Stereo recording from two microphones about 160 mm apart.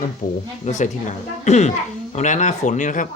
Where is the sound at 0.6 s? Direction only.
45° left (ahead or behind).